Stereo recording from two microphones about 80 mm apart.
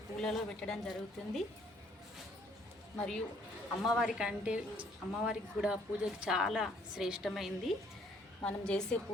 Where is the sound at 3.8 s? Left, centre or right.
Centre.